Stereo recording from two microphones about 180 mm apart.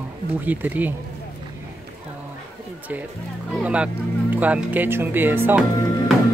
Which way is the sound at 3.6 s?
5° right (ahead or behind).